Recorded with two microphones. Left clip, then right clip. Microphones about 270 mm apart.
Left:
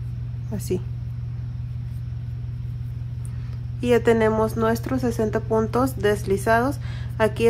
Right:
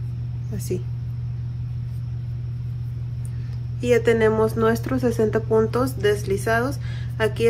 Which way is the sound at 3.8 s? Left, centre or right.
Centre.